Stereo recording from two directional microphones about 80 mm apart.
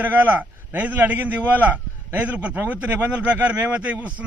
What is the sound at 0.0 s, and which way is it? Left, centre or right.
A man's voice, right.